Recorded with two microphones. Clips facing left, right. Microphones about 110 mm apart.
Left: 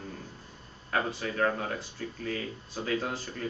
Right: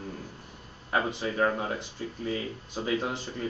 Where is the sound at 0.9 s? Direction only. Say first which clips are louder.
Right 2 dB; 20° right (ahead or behind).